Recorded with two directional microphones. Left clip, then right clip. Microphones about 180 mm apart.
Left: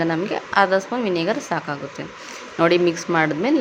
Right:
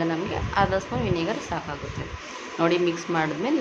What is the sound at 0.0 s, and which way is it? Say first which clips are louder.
A woman's voice: left 5 dB; 30° left (ahead or behind).